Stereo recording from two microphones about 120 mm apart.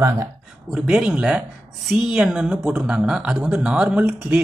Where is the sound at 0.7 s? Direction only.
5° right (ahead or behind).